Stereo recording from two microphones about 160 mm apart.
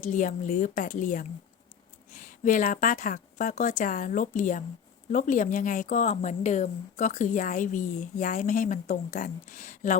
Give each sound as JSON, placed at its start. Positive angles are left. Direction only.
{"t": 0.0, "sound": "speech", "side_deg": 50}